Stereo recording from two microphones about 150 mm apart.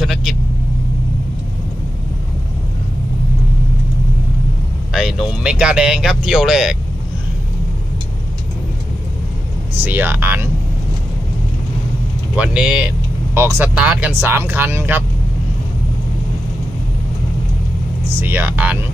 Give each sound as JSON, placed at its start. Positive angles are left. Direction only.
{"t": 0.0, "sound": "vehicle", "side_deg": 0}
{"t": 4.9, "sound": "vehicle", "side_deg": 0}
{"t": 5.4, "sound": "speech", "side_deg": -5}
{"t": 9.8, "sound": "speech", "side_deg": -15}
{"t": 12.4, "sound": "speech", "side_deg": -5}
{"t": 18.2, "sound": "speech", "side_deg": -15}